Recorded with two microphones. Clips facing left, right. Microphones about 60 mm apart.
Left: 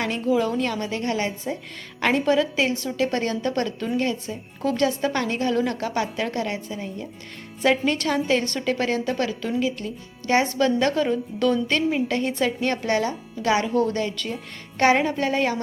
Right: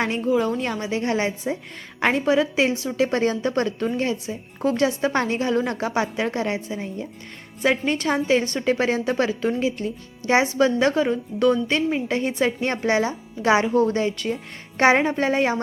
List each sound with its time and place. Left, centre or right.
0.0 s a woman's voice: right
0.3 s a woman's voice: centre
0.6 s a woman's voice: centre
7.6 s a woman's voice: centre